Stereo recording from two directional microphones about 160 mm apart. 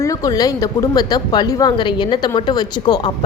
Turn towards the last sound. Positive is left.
turn(degrees=25)  # may be behind; listen again after turning